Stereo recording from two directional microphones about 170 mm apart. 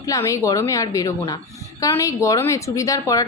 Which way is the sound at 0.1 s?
20° left (ahead or behind).